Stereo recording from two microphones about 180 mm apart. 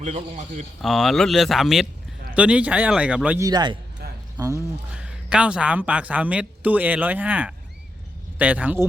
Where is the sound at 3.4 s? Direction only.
25° right (ahead or behind).